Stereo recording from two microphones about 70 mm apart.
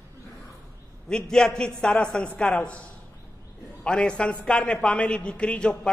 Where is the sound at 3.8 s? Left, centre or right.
Centre.